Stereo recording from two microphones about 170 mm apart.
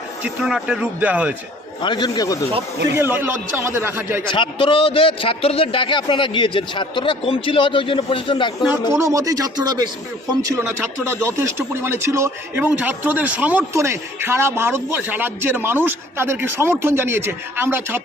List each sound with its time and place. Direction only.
0.2 s a man's voice: 5° right (ahead or behind)
1.8 s a man's voice: 25° left (ahead or behind)
2.9 s a man's voice: 15° right (ahead or behind)
4.3 s a man's voice: 30° left (ahead or behind)
8.9 s speech: 15° right (ahead or behind)
11.3 s a man's voice: 15° right (ahead or behind)